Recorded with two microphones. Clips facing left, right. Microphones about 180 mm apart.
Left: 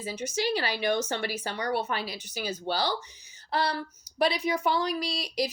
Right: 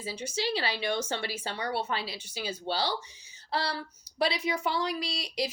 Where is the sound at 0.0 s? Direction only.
30° right (ahead or behind).